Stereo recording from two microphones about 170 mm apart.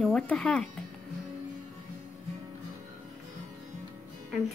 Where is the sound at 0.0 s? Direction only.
5° left (ahead or behind).